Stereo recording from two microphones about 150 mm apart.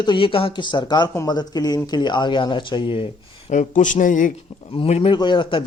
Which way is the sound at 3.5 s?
55° left (ahead or behind).